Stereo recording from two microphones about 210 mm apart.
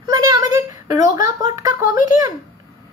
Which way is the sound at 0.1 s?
15° right (ahead or behind).